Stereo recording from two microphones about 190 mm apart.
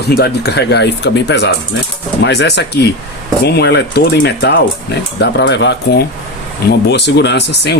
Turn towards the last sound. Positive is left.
turn(degrees=65)  # may be behind; listen again after turning